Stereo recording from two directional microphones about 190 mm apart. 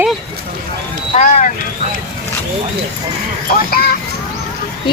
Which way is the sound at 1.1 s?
40° left (ahead or behind).